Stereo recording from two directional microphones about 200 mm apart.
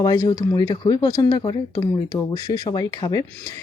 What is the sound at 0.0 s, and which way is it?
Speech, 20° left (ahead or behind).